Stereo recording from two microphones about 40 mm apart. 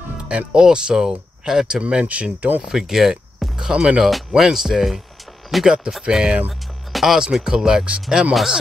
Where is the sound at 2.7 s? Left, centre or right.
Centre.